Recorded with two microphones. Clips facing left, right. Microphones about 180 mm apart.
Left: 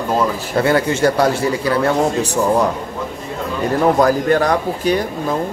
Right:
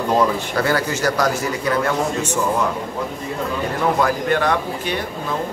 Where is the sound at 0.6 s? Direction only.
25° left (ahead or behind).